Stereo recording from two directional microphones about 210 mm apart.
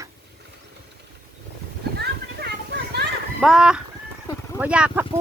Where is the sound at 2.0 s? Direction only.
50° right (ahead or behind).